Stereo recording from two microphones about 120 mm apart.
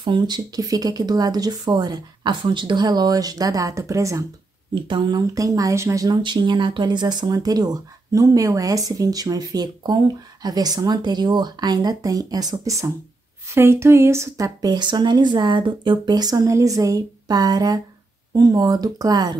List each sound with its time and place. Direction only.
0.0 s speech: 40° right (ahead or behind)
4.8 s speech: 40° right (ahead or behind)
6.2 s speech: 40° right (ahead or behind)